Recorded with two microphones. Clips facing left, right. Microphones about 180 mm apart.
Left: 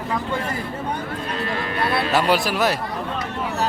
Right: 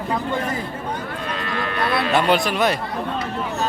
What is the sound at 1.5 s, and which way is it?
Music, 35° left (ahead or behind).